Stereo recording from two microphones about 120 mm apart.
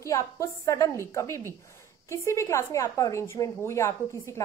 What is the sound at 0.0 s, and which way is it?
A woman's voice, 25° left (ahead or behind).